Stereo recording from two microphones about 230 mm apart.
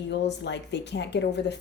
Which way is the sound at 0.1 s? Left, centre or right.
Left.